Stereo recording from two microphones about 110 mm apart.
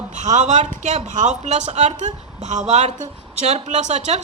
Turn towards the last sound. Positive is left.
turn(degrees=-90)